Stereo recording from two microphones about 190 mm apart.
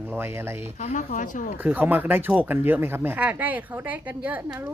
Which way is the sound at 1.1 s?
45° left (ahead or behind).